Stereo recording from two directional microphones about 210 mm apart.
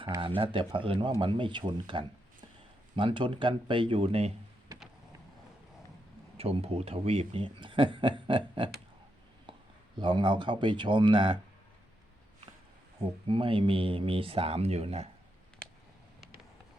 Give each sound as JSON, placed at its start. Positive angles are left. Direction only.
{"t": 0.0, "sound": "speech", "side_deg": -25}
{"t": 6.3, "sound": "speech", "side_deg": -30}
{"t": 10.0, "sound": "speech", "side_deg": -25}
{"t": 13.2, "sound": "speech", "side_deg": -25}